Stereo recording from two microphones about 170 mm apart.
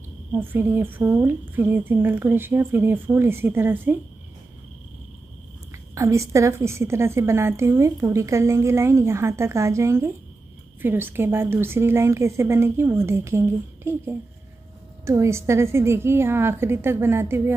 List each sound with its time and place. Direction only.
0.4 s a woman's voice: 15° right (ahead or behind)
5.9 s a woman's voice: 20° right (ahead or behind)